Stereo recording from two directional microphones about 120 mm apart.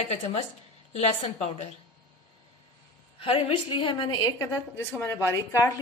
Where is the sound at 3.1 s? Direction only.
50° left (ahead or behind); by 4.4 s 35° left (ahead or behind).